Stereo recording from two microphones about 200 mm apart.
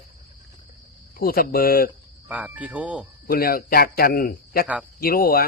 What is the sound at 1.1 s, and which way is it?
Speech, 50° left (ahead or behind).